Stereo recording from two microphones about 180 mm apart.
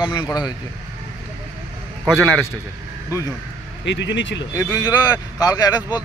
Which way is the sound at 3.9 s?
80° left.